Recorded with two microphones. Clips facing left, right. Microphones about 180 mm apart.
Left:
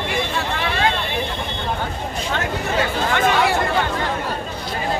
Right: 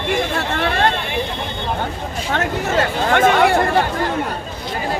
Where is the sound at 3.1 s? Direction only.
55° right (ahead or behind).